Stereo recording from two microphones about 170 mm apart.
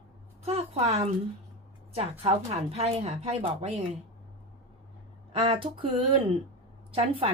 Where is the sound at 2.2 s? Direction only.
35° right (ahead or behind).